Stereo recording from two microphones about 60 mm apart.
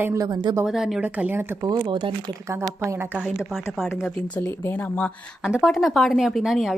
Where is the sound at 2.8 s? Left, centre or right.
Right.